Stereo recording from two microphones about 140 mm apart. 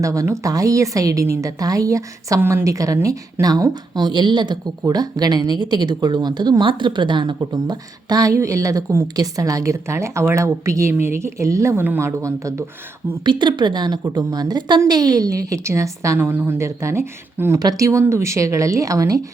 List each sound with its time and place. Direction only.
0.0 s speech: 25° right (ahead or behind)
13.2 s speech: 35° right (ahead or behind)